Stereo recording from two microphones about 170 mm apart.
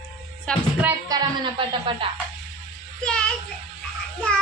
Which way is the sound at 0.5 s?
5° left (ahead or behind).